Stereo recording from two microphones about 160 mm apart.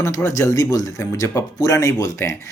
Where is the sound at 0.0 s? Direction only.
20° left (ahead or behind).